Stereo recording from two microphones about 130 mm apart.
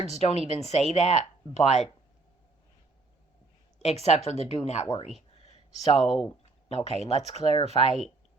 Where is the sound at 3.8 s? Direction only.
55° left (ahead or behind).